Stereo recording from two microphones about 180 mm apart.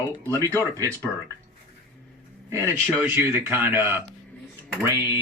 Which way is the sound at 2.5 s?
15° right (ahead or behind).